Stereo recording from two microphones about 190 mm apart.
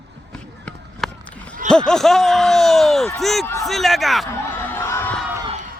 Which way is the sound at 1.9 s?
Centre (ahead or behind).